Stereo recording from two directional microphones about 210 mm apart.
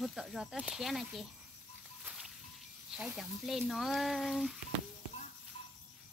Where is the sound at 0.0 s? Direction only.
Centre (ahead or behind).